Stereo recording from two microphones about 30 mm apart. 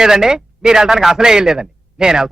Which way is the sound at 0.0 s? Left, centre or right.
Centre.